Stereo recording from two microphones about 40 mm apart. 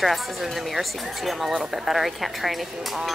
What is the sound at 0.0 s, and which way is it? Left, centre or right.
Speech, centre.